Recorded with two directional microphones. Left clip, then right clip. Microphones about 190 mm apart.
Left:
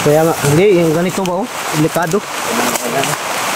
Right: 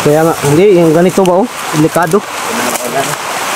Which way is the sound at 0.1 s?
15° right (ahead or behind).